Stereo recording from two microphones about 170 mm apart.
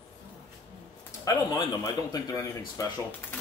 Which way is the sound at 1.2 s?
20° left (ahead or behind).